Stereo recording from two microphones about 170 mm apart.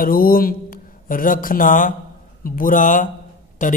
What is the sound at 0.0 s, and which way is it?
A man's voice, 60° left (ahead or behind).